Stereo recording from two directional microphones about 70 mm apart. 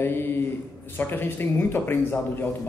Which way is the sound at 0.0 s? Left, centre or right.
Left.